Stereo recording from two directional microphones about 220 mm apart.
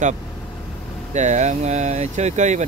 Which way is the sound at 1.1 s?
30° right (ahead or behind).